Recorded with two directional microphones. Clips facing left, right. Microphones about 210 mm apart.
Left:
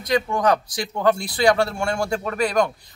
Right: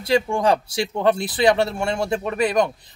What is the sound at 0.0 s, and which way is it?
Speech, 30° right (ahead or behind).